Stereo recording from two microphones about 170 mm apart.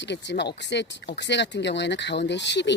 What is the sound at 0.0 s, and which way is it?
Speech, 90° left.